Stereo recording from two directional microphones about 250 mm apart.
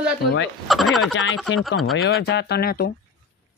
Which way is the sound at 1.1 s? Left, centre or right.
Left.